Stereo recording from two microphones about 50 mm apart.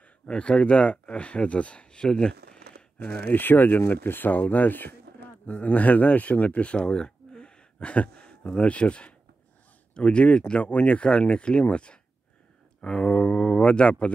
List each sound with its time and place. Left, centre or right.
0.3 s speech: left
3.1 s speech: left
3.3 s speech: left
5.5 s speech: left